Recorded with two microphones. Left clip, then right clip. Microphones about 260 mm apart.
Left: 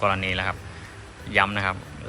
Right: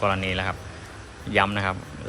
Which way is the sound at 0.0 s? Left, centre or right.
Centre.